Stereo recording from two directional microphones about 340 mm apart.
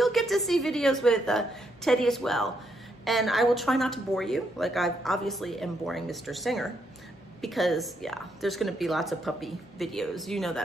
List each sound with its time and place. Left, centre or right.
0.0 s a woman's voice: centre